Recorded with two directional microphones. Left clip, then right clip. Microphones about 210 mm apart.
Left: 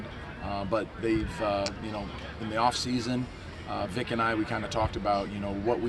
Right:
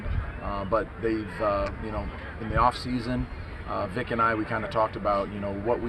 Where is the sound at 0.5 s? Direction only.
Centre (ahead or behind).